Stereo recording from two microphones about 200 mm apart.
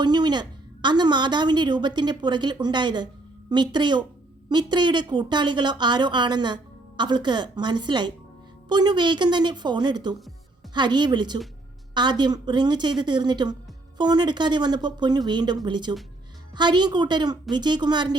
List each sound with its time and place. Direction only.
0.0 s a woman's voice: 20° right (ahead or behind)